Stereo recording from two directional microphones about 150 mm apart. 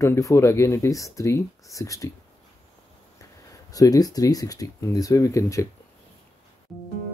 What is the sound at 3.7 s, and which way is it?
Speech, 25° left (ahead or behind).